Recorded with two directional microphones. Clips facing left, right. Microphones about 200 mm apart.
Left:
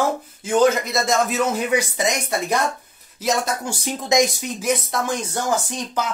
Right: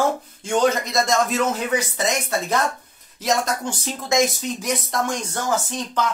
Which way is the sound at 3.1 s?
5° left (ahead or behind).